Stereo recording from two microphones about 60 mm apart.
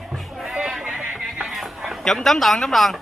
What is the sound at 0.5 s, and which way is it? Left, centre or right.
Sheep, centre.